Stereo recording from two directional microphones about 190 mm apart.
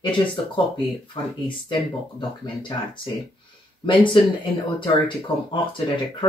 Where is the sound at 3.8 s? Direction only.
25° left (ahead or behind).